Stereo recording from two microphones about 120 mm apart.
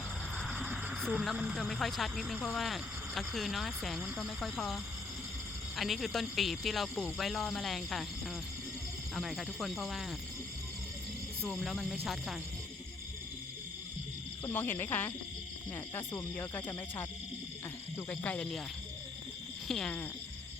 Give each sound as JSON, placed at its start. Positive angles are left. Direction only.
{"t": 0.3, "sound": "speech", "side_deg": 5}
{"t": 9.1, "sound": "speech", "side_deg": 0}
{"t": 11.4, "sound": "speech", "side_deg": 0}
{"t": 14.4, "sound": "speech", "side_deg": 20}
{"t": 16.3, "sound": "speech", "side_deg": 20}
{"t": 18.1, "sound": "speech", "side_deg": 10}
{"t": 19.6, "sound": "speech", "side_deg": 5}